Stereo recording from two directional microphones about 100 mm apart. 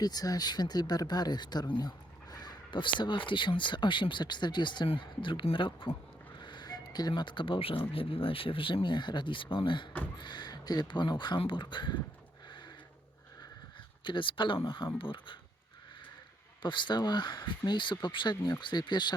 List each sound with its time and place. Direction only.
0.0 s speech: 40° left (ahead or behind); by 6.0 s 55° left (ahead or behind)
6.4 s music: 50° left (ahead or behind)
7.1 s speech: 50° left (ahead or behind)
12.5 s a sound: 50° left (ahead or behind)
14.0 s speech: 55° left (ahead or behind)
16.6 s speech: 50° left (ahead or behind)